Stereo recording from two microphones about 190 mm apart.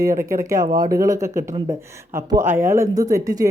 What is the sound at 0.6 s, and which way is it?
Speech, 20° right (ahead or behind).